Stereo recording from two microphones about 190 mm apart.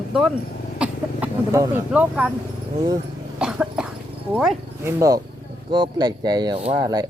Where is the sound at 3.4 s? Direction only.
5° right (ahead or behind).